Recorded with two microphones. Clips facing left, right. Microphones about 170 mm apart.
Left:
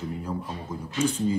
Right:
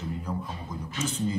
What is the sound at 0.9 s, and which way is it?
Speech, 10° left (ahead or behind).